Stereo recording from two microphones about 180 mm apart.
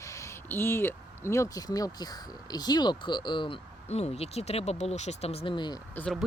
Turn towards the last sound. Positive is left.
turn(degrees=5)  # may be behind; listen again after turning